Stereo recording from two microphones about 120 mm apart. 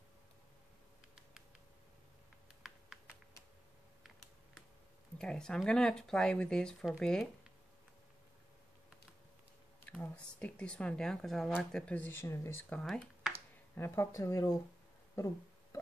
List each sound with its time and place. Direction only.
5.2 s speech: 5° left (ahead or behind)
9.8 s speech: 10° left (ahead or behind)
12.0 s speech: 20° left (ahead or behind)
12.8 s speech: centre (ahead or behind)
13.7 s speech: 20° left (ahead or behind)